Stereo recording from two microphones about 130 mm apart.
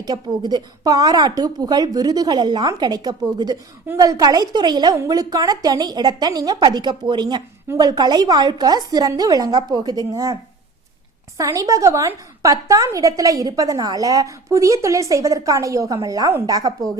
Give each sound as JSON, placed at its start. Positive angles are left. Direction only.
{"t": 0.0, "sound": "speech", "side_deg": -30}
{"t": 11.3, "sound": "a woman's voice", "side_deg": -25}